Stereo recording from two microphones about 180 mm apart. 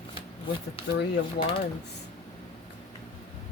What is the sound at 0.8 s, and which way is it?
Speech, 30° left (ahead or behind).